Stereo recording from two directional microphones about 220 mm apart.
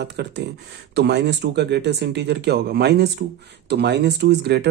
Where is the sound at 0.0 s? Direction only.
50° right (ahead or behind).